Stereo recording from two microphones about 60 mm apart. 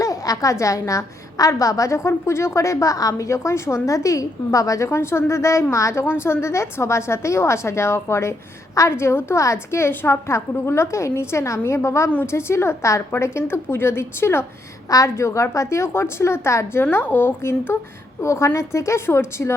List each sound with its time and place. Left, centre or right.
0.0 s a woman's voice: left
6.1 s a woman's voice: left
8.9 s a woman's voice: left
14.8 s a woman's voice: left
15.1 s a woman's voice: left
16.8 s a woman's voice: left
18.2 s a woman's voice: left